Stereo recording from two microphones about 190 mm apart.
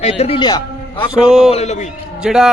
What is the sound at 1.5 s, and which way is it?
Speech, 35° left (ahead or behind).